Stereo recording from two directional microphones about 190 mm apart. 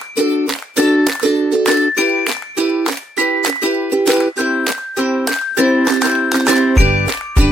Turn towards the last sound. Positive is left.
turn(degrees=-5)  # may be behind; listen again after turning